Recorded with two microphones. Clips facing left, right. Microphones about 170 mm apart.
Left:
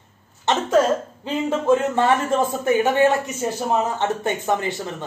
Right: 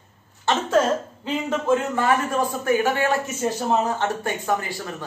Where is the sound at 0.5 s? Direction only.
20° left (ahead or behind).